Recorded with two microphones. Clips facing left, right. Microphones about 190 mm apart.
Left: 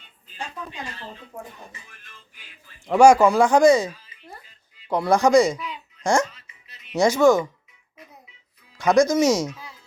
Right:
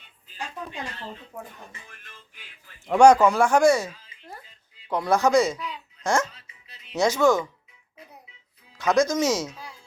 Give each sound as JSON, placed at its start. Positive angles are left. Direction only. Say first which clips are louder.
{"t": 2.8, "sound": "speech", "louder": "left 1 dB", "side_deg": 5}
{"t": 6.3, "sound": "music", "louder": "even", "side_deg": -30}
{"t": 6.9, "sound": "speech", "louder": "left 4 dB", "side_deg": 10}
{"t": 8.8, "sound": "speech", "louder": "left 4 dB", "side_deg": 10}